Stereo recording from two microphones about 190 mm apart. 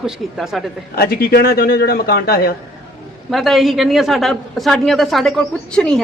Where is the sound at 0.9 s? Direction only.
55° left (ahead or behind).